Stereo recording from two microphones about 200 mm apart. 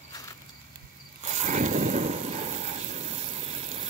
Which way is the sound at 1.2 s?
35° right (ahead or behind).